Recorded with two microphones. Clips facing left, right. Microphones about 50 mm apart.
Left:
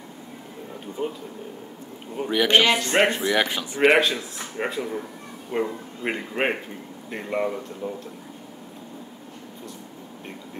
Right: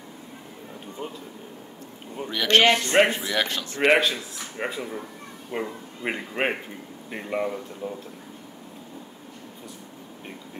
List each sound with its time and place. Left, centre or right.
1.0 s a man's voice: centre
3.0 s speech: centre
3.3 s speech: centre